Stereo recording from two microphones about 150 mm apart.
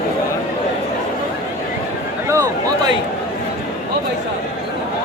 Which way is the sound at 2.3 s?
20° right (ahead or behind).